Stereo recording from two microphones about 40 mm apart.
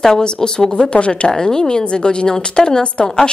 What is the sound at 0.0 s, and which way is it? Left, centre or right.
A woman's voice, centre.